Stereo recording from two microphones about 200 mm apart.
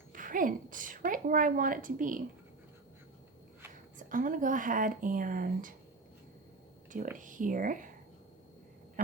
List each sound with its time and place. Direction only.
0.1 s a woman's voice: 45° right (ahead or behind)
3.9 s speech: 40° right (ahead or behind)
6.9 s speech: 40° right (ahead or behind)